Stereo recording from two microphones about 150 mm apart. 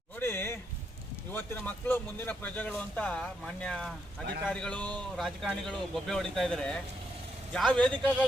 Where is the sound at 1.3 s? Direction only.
10° left (ahead or behind).